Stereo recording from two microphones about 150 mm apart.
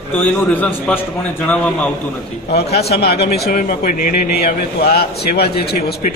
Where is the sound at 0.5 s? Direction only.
10° left (ahead or behind).